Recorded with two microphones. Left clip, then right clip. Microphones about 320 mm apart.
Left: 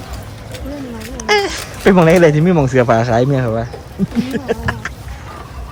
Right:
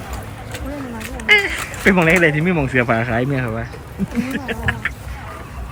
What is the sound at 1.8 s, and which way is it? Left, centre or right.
Speech, right.